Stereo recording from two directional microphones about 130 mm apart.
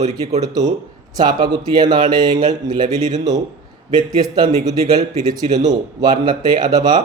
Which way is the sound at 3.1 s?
60° right (ahead or behind).